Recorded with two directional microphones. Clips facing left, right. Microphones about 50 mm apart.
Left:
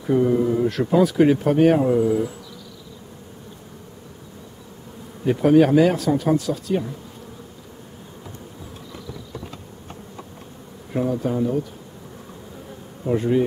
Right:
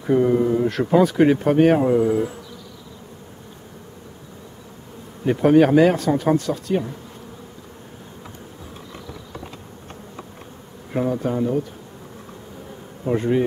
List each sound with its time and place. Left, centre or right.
0.0 s speech: centre
5.2 s speech: centre
10.9 s bee: centre
11.3 s speech: centre
13.0 s speech: centre